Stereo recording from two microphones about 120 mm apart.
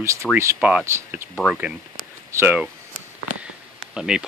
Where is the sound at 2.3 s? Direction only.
20° right (ahead or behind).